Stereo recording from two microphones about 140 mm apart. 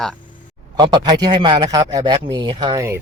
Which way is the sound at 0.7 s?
35° right (ahead or behind).